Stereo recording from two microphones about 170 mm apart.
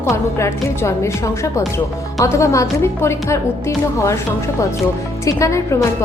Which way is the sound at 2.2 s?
20° left (ahead or behind).